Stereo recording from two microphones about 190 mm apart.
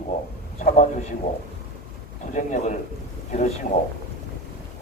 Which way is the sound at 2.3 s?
40° left (ahead or behind).